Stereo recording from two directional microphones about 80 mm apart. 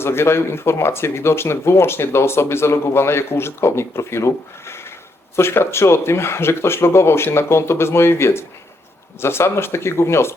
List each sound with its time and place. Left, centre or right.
0.0 s speech: left